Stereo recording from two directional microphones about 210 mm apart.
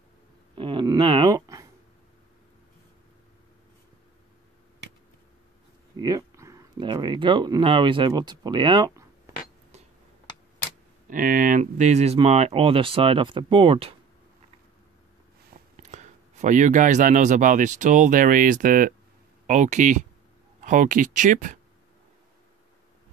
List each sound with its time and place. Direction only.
0.6 s speech: 25° right (ahead or behind)
5.9 s speech: 20° right (ahead or behind)
11.1 s speech: 40° right (ahead or behind)
15.7 s speech: 35° right (ahead or behind)